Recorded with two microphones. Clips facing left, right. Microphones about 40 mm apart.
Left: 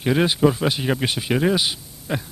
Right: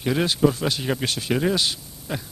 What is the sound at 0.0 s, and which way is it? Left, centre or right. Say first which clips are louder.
A man's voice: left 3 dB; centre.